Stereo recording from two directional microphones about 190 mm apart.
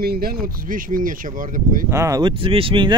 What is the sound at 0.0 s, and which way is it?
Speech, 50° right (ahead or behind).